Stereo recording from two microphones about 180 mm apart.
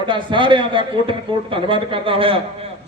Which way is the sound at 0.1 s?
25° right (ahead or behind).